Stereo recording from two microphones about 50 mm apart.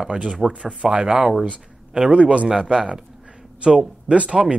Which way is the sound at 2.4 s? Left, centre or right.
Centre.